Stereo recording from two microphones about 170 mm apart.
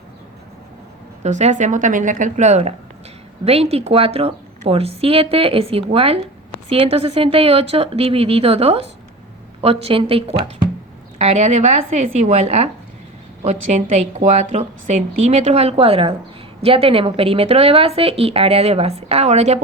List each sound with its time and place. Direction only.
1.2 s a woman's voice: 45° right (ahead or behind)